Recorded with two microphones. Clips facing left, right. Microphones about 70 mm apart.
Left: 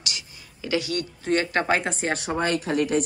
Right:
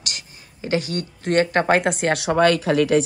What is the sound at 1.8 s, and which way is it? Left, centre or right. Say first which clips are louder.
Speech: right 6 dB; right.